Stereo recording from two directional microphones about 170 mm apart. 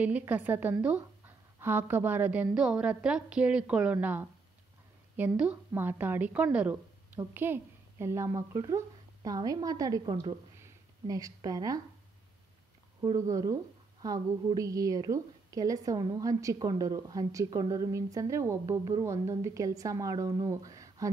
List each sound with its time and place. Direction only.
0.0 s a woman's voice: 10° right (ahead or behind)
10.6 s a sound: 20° right (ahead or behind)
13.0 s a woman's voice: 20° right (ahead or behind)